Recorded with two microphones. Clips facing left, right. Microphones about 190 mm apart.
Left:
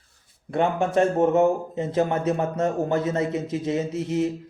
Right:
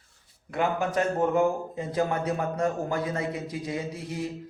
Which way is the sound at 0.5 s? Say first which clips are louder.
Left 5 dB; 25° left (ahead or behind).